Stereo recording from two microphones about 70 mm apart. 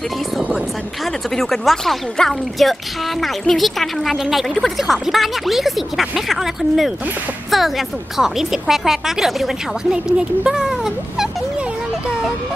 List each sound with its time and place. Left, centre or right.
1.3 s speech: centre